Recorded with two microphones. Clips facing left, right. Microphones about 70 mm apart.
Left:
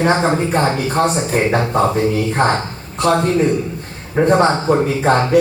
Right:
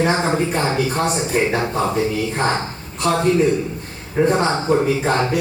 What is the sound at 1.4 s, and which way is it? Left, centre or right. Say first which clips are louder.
Speech: left 1 dB; left.